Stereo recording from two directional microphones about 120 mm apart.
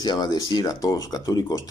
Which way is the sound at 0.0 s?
35° left (ahead or behind).